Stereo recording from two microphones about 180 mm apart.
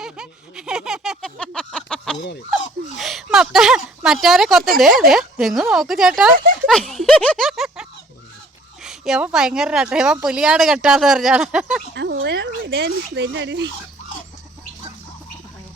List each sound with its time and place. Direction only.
0.0 s a sound: 5° right (ahead or behind)
3.2 s a woman's voice: centre (ahead or behind)
11.9 s speech: 75° right (ahead or behind)